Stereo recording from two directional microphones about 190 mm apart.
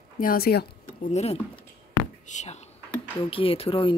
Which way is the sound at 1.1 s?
35° left (ahead or behind).